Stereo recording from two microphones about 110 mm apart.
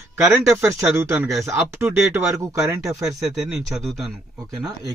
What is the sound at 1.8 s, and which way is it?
Speech, 25° right (ahead or behind).